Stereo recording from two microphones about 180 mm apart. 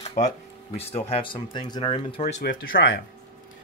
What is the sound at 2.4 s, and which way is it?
Speech, 60° left (ahead or behind).